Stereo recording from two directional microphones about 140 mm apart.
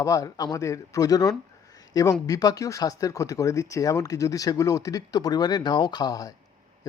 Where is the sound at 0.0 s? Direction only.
25° left (ahead or behind).